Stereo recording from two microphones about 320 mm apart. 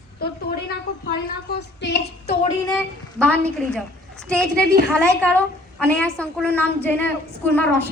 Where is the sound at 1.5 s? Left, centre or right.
Left.